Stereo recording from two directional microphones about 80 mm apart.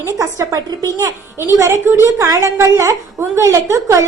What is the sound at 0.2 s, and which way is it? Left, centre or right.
A woman's voice, right.